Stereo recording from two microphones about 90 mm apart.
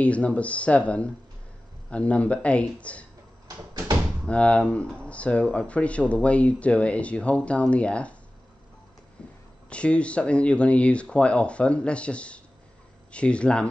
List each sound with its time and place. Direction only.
0.0 s speech: 15° left (ahead or behind)
3.4 s door: 40° right (ahead or behind)
4.3 s speech: 15° left (ahead or behind)
9.2 s a sound: 10° left (ahead or behind)
9.7 s speech: 15° left (ahead or behind)